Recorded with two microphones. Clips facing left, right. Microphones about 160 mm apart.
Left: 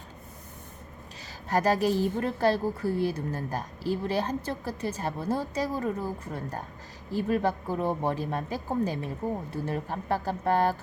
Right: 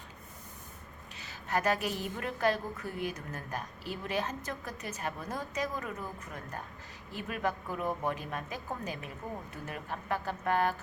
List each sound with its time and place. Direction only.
1.2 s a woman's voice: 35° left (ahead or behind)